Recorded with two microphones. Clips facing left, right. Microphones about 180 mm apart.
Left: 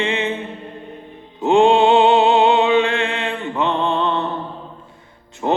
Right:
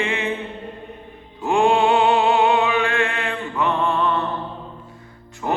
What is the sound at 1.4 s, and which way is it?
Music, 20° left (ahead or behind).